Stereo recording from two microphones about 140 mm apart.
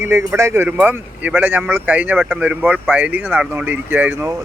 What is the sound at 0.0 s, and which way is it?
Speech, 15° right (ahead or behind).